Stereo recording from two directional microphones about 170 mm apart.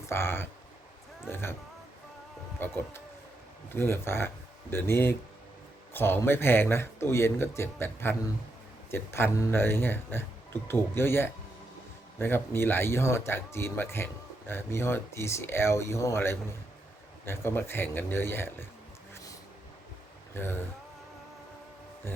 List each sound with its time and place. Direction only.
0.1 s speech: 15° left (ahead or behind)
2.6 s speech: 15° left (ahead or behind)
19.1 s a sound: 20° left (ahead or behind)
20.3 s speech: 15° left (ahead or behind)